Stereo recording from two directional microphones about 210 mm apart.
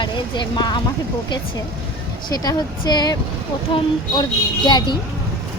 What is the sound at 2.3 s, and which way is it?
Speech, 20° left (ahead or behind).